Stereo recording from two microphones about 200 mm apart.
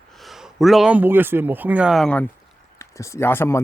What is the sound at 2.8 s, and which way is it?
Speech, 15° left (ahead or behind).